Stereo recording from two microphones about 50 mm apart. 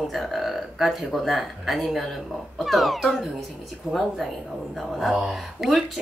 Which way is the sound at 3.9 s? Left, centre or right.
Centre.